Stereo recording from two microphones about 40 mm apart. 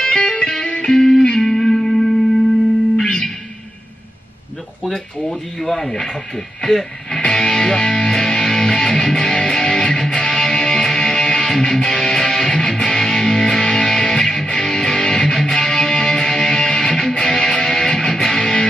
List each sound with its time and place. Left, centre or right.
0.2 s music: left; by 2.0 s centre
3.0 s music: centre
4.8 s speech: centre
7.2 s music: left
15.0 s music: left
15.2 s music: centre